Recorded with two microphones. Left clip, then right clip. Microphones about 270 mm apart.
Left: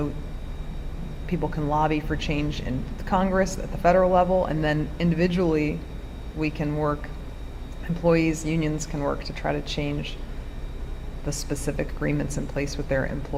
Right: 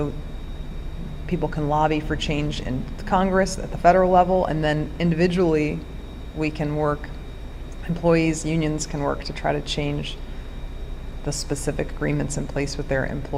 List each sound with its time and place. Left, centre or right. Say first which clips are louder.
1.3 s speech: right 3 dB; centre
8.0 s speech: right 2 dB; centre
11.3 s speech: right 3 dB; right